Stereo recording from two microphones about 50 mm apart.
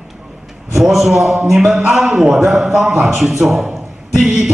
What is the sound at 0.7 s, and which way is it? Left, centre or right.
A man's voice, centre.